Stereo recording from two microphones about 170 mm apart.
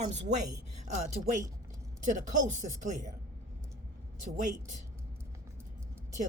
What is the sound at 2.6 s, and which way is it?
Speech, 45° right (ahead or behind).